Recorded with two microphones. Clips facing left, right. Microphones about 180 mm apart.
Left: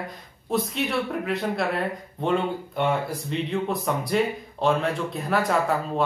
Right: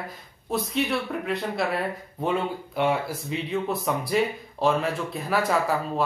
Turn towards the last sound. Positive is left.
turn(degrees=0)  # may be behind; listen again after turning